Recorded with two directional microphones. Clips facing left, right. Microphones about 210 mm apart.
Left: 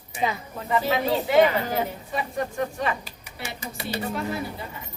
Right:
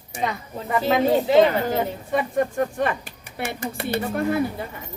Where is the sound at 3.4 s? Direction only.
55° right (ahead or behind).